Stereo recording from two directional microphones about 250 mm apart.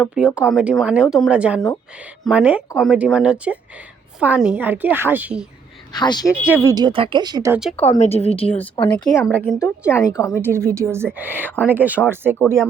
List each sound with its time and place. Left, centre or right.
0.0 s speech: centre
5.9 s speech: centre
6.3 s speech: centre
7.8 s speech: left
8.7 s speech: centre
10.4 s speech: centre